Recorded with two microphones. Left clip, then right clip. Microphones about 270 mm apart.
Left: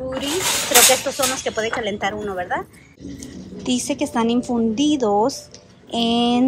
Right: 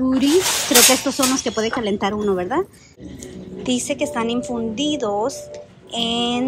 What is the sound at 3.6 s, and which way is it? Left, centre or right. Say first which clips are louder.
A woman's voice: right 1 dB; centre.